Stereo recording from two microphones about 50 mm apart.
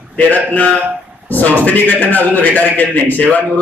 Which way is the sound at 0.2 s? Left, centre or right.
Left.